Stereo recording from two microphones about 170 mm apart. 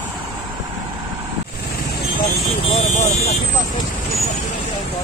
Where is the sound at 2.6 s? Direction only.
45° left (ahead or behind).